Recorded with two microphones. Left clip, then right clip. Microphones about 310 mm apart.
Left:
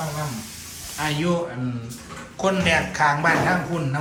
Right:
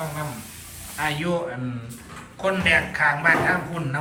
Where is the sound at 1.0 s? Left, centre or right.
Centre.